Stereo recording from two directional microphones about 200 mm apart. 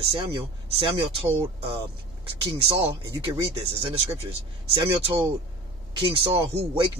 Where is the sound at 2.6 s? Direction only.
30° right (ahead or behind).